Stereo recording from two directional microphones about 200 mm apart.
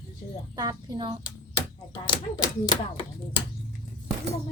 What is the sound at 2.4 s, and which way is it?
Chopping, 20° left (ahead or behind).